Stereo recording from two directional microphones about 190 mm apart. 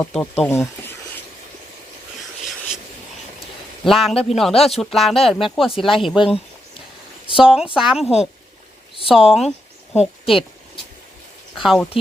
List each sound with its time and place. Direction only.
0.0 s speech: 5° left (ahead or behind)
3.8 s speech: centre (ahead or behind)
9.9 s speech: 35° left (ahead or behind)
11.5 s speech: centre (ahead or behind)